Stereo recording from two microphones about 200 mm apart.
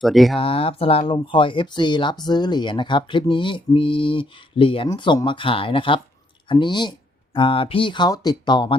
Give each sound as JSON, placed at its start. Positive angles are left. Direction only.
{"t": 0.0, "sound": "speech", "side_deg": 0}
{"t": 0.3, "sound": "speech", "side_deg": 30}